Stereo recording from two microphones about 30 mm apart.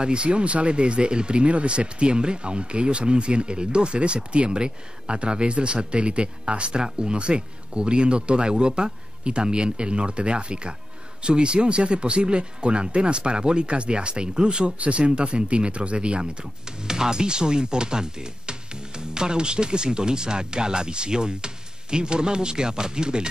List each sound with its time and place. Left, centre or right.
0.0 s speech: right
14.8 s speech: right
16.8 s speech: right